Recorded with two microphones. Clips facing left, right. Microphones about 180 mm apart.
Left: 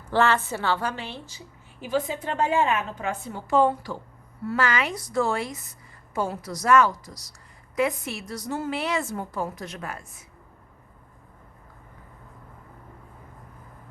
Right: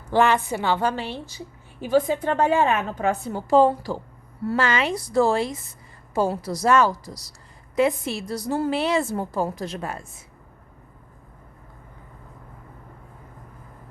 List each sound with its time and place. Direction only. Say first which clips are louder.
0.1 s a woman's voice: right 3 dB; 15° right (ahead or behind)
0.9 s a woman's voice: right 6 dB; 35° right (ahead or behind)